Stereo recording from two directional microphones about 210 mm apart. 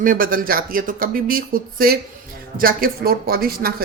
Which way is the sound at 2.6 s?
45° right (ahead or behind).